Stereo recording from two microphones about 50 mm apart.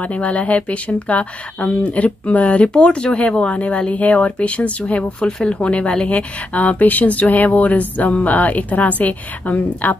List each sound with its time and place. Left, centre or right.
0.0 s speech: left